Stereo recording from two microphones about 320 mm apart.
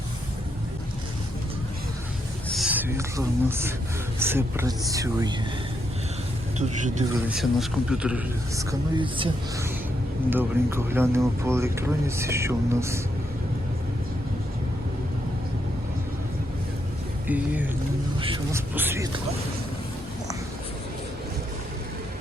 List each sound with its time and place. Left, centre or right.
2.5 s speech: centre
6.6 s speech: right
7.3 s a man's voice: centre
9.0 s speech: centre
17.2 s a man's voice: centre
18.2 s a sound: centre
18.7 s speech: centre